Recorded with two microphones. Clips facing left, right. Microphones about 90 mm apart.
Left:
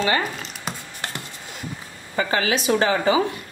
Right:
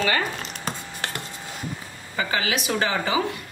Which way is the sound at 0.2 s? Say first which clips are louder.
Even; 5° left (ahead or behind).